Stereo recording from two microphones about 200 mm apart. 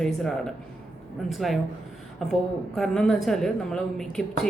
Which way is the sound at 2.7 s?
Centre (ahead or behind).